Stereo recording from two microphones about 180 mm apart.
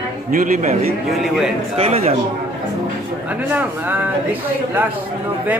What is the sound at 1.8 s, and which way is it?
Speech, 35° right (ahead or behind).